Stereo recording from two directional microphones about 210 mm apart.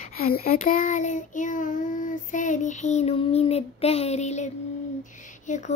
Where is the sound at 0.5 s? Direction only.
40° left (ahead or behind).